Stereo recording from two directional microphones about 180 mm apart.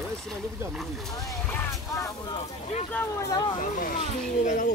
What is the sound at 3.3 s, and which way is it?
Speech, 25° left (ahead or behind).